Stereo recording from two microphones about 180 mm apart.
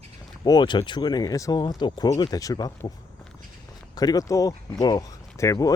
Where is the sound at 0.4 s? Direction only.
25° left (ahead or behind).